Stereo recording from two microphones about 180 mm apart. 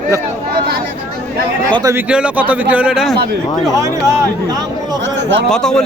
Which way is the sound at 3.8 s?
15° right (ahead or behind).